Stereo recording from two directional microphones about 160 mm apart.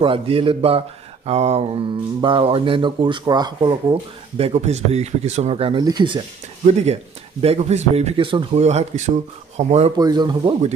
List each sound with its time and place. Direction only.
0.0 s speech: 35° right (ahead or behind)
6.6 s speech: 45° right (ahead or behind)
9.9 s speech: 25° right (ahead or behind)